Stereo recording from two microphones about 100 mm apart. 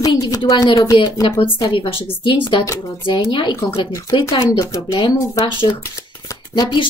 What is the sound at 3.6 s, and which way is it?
Speech, 30° left (ahead or behind).